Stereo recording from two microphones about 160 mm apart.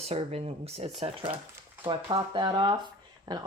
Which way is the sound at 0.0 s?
40° right (ahead or behind).